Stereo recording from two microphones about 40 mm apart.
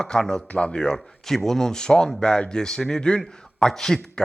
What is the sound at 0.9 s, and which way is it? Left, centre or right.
A man's voice, centre.